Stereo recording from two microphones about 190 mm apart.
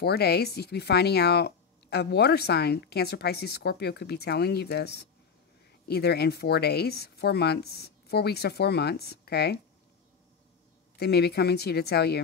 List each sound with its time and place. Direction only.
0.0 s speech: 55° left (ahead or behind)
11.0 s speech: 55° left (ahead or behind)